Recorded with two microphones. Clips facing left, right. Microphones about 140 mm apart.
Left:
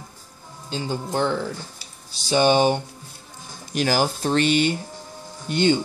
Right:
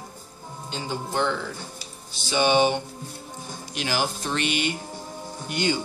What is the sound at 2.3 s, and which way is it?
Speech, 40° left (ahead or behind).